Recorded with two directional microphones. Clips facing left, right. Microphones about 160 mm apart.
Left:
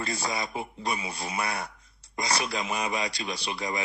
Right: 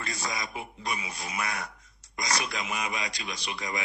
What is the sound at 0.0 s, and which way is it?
A man's voice, 30° left (ahead or behind).